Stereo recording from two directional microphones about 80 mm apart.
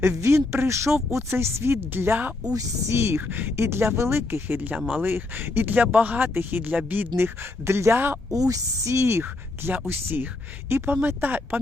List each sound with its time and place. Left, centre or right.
0.2 s speech: right
2.5 s speech: right
3.2 s speech: right
4.8 s speech: centre
5.0 s speech: right
7.2 s speech: right
8.3 s a woman's voice: right
9.2 s speech: right